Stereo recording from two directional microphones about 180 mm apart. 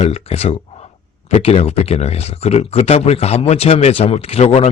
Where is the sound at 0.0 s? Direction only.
35° left (ahead or behind).